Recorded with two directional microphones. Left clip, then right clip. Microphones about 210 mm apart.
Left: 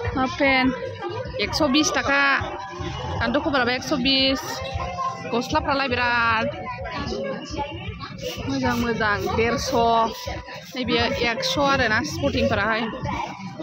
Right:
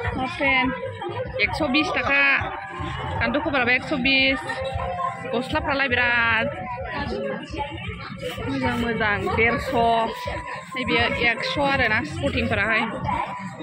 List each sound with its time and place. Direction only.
0.4 s speech: 25° left (ahead or behind)
9.0 s speech: 10° left (ahead or behind)